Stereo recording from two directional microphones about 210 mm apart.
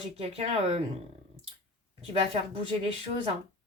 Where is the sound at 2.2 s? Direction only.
30° right (ahead or behind).